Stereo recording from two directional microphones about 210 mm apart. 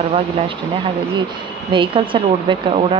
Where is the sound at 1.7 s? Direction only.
25° right (ahead or behind).